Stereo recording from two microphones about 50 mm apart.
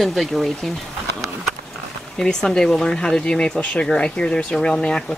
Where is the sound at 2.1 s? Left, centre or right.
Centre.